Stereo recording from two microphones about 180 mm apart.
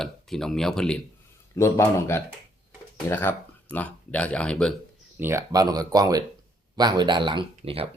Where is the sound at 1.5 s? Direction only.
15° left (ahead or behind).